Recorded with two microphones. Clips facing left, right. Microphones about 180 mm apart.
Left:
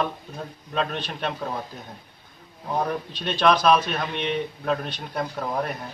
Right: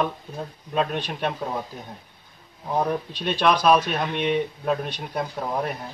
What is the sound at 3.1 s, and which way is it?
Speech, 10° right (ahead or behind).